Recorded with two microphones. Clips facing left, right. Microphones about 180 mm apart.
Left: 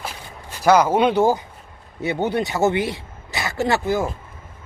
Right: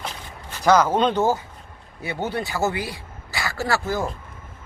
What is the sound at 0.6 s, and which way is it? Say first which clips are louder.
Speech: left 2 dB; 10° left (ahead or behind).